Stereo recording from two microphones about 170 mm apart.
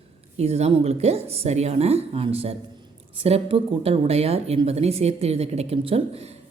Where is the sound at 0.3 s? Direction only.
40° right (ahead or behind).